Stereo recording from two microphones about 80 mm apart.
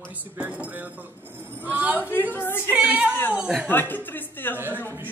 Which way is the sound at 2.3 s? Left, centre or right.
Left.